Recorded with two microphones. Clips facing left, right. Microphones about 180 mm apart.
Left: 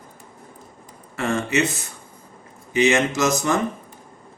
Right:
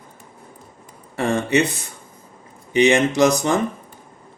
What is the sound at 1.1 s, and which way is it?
Speech, 35° right (ahead or behind).